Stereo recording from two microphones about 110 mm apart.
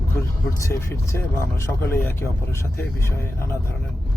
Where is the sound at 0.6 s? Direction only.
25° left (ahead or behind).